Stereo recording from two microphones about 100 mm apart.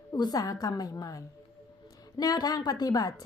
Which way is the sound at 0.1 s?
45° left (ahead or behind).